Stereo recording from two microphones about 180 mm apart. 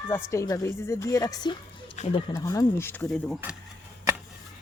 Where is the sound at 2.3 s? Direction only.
20° left (ahead or behind).